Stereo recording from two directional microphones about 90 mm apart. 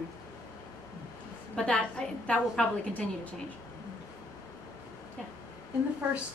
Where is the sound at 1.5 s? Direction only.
10° left (ahead or behind).